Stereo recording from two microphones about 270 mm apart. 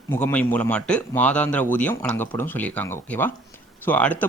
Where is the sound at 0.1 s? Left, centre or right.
Centre.